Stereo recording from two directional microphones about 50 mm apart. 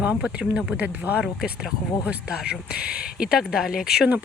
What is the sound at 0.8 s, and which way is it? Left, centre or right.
Speech, right.